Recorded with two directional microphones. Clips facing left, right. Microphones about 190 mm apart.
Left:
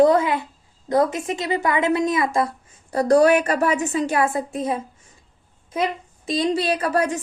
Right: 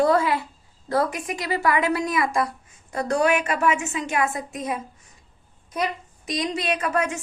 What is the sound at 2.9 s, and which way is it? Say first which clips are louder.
A woman's voice: left 6 dB; 35° left (ahead or behind).